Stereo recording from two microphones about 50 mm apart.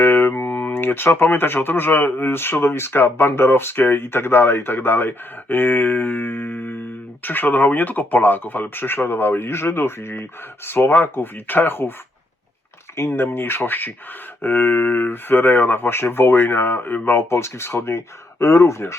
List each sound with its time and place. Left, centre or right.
0.0 s a sound: left
1.4 s speech: left
13.0 s speech: left
17.1 s speech: left